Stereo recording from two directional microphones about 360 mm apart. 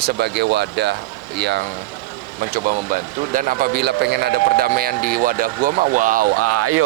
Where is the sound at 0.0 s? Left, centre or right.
Right.